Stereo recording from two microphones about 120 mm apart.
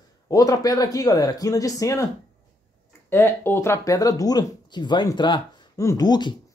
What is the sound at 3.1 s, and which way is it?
Speech, 20° left (ahead or behind).